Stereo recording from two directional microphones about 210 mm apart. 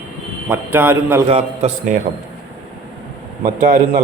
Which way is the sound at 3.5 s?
35° right (ahead or behind).